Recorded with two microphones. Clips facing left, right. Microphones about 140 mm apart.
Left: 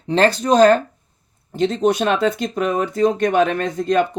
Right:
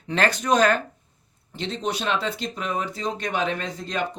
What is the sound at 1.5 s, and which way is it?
Speech, 45° left (ahead or behind).